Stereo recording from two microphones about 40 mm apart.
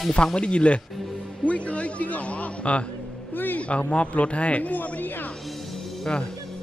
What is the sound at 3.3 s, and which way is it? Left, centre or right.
Speech, left.